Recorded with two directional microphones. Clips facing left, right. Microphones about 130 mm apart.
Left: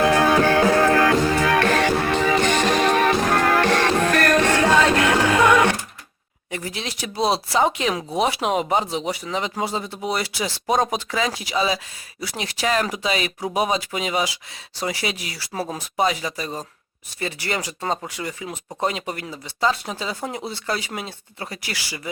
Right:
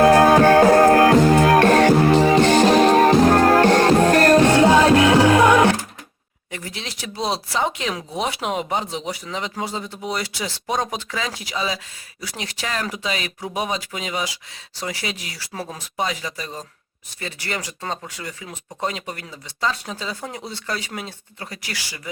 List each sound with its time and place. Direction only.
0.0 s music: 45° right (ahead or behind)
4.4 s music: 20° right (ahead or behind)
6.5 s a sound: 10° left (ahead or behind)
7.3 s speech: 35° left (ahead or behind)
7.8 s speech: 5° left (ahead or behind)
17.2 s speech: 15° left (ahead or behind)